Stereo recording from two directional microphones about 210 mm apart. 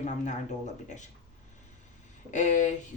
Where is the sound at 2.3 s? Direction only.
35° left (ahead or behind).